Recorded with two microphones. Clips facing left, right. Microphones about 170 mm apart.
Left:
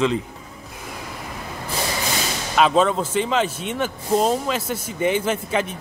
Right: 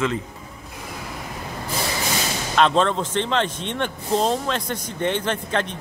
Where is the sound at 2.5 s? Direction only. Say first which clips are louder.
Left 1 dB; 5° left (ahead or behind).